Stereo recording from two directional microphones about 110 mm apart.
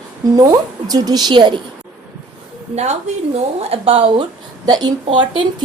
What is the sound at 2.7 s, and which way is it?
Speech, 90° right.